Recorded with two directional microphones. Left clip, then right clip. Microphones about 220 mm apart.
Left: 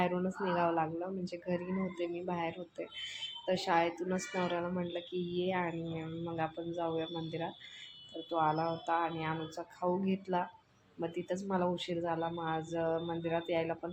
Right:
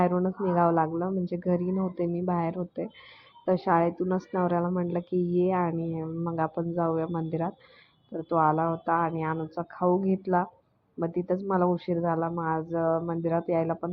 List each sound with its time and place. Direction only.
0.0 s a woman's voice: 20° right (ahead or behind)